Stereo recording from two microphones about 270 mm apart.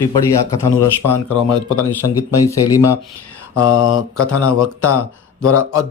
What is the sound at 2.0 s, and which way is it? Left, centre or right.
Speech, left.